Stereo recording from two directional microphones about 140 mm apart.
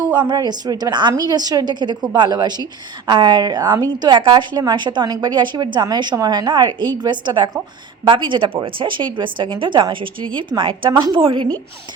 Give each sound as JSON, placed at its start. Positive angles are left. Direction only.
{"t": 0.0, "sound": "a woman's voice", "side_deg": -30}